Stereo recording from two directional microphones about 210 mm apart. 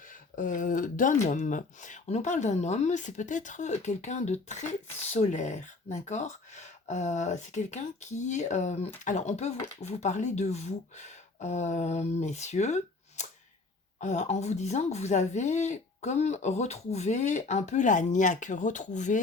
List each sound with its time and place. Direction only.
0.3 s speech: 40° left (ahead or behind)